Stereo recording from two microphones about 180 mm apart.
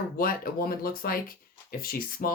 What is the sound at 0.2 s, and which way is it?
Speech, 55° left (ahead or behind).